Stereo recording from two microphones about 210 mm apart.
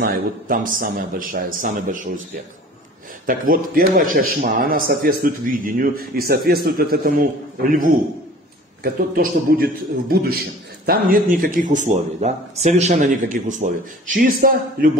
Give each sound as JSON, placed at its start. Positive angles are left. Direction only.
{"t": 0.0, "sound": "a man's voice", "side_deg": -45}
{"t": 3.3, "sound": "speech", "side_deg": -40}
{"t": 8.8, "sound": "a man's voice", "side_deg": -45}